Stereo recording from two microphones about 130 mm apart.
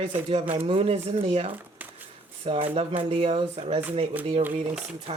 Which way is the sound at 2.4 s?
45° right (ahead or behind).